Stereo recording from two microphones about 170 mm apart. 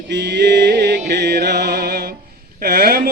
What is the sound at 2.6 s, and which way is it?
Music, 60° right (ahead or behind).